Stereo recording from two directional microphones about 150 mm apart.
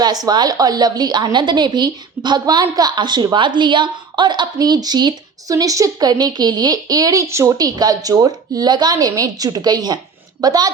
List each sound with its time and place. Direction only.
0.0 s a woman's voice: 25° right (ahead or behind)